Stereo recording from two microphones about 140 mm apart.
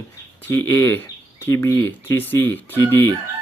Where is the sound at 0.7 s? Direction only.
15° left (ahead or behind).